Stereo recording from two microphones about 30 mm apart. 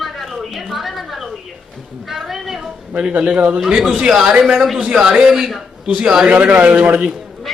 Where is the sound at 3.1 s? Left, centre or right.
Right.